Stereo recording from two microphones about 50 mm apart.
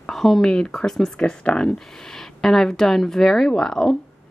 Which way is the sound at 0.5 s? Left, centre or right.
Centre.